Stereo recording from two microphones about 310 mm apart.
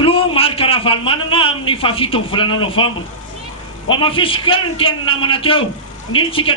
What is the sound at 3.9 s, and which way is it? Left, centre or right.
A man's voice, centre.